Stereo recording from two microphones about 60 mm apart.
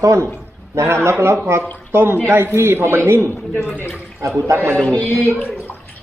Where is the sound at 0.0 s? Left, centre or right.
Right.